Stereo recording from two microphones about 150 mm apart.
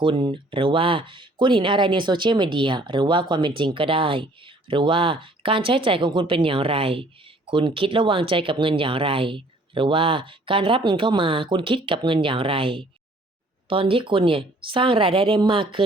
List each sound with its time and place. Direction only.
0.0 s speech: 35° right (ahead or behind)